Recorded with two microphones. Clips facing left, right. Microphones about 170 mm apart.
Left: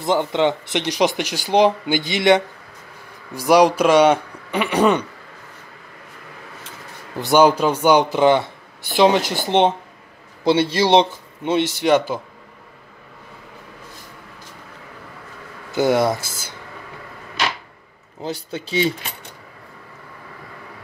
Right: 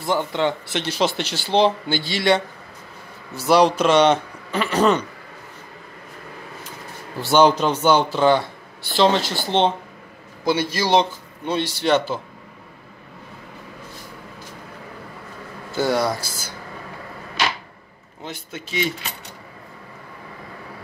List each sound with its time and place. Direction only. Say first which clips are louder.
0.0 s speech: left 3 dB; 20° left (ahead or behind)
7.2 s a man's voice: left 1 dB; 15° left (ahead or behind)
15.7 s a man's voice: left 4 dB; 20° left (ahead or behind)
18.2 s speech: left 6 dB; 35° left (ahead or behind)